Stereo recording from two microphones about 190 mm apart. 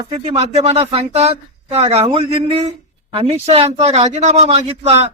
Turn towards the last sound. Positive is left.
turn(degrees=-35)  # may be behind; listen again after turning